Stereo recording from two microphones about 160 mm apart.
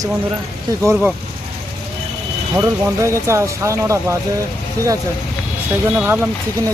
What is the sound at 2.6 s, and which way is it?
Speech, 20° right (ahead or behind).